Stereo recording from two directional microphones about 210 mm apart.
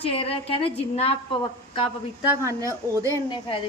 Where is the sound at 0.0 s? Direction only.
25° left (ahead or behind).